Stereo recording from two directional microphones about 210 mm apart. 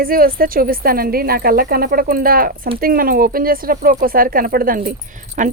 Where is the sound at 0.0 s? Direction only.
45° right (ahead or behind).